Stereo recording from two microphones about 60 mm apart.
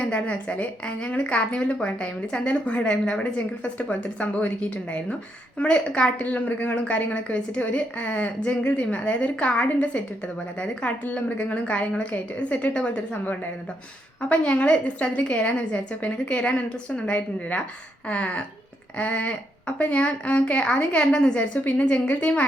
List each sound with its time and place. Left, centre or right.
0.1 s a woman's voice: centre
5.5 s a woman's voice: centre